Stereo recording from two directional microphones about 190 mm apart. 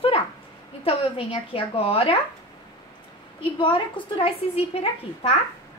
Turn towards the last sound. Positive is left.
turn(degrees=30)  # may be behind; listen again after turning